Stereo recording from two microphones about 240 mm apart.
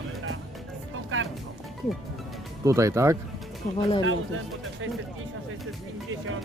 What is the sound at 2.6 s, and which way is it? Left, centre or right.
Speech, centre.